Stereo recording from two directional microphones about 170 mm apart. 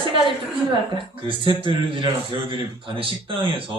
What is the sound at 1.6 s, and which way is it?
Speech, 30° right (ahead or behind).